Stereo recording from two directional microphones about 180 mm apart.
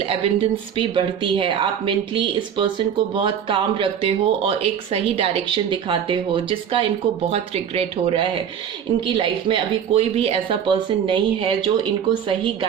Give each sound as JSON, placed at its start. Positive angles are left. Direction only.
{"t": 0.0, "sound": "speech", "side_deg": -30}